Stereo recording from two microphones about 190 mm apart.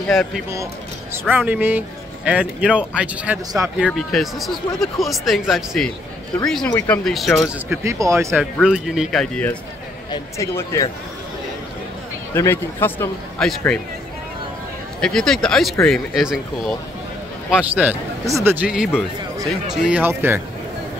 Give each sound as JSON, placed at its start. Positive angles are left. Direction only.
{"t": 0.0, "sound": "speech", "side_deg": 5}
{"t": 1.3, "sound": "speech", "side_deg": -10}
{"t": 7.8, "sound": "speech", "side_deg": -15}
{"t": 8.3, "sound": "speech", "side_deg": 0}
{"t": 10.1, "sound": "speech", "side_deg": 15}
{"t": 12.4, "sound": "speech", "side_deg": 15}
{"t": 13.4, "sound": "speech", "side_deg": 0}
{"t": 15.0, "sound": "speech", "side_deg": 5}